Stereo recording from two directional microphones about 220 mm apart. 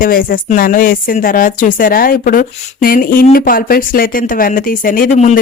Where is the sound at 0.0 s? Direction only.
40° left (ahead or behind).